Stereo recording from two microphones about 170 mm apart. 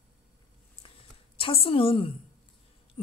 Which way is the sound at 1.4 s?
35° left (ahead or behind).